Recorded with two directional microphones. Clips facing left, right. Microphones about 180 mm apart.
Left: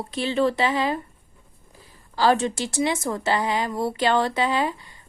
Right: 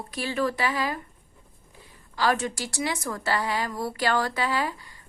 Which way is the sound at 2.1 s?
30° left (ahead or behind).